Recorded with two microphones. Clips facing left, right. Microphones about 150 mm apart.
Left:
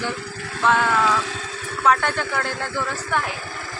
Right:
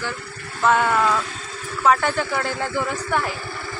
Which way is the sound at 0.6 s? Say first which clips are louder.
Right 1 dB; 5° right (ahead or behind).